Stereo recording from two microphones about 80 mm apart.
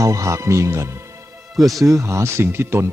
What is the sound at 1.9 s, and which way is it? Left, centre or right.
Speech, right.